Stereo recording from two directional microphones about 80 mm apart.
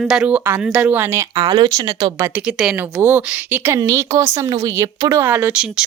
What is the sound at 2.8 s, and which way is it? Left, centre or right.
Speech, right.